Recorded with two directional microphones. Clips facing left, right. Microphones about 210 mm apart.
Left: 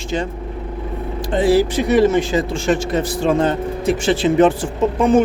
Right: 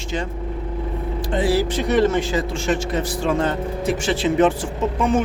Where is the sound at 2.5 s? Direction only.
35° left (ahead or behind).